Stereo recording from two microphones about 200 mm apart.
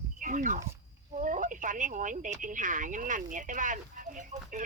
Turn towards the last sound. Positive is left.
turn(degrees=-40)  # may be behind; listen again after turning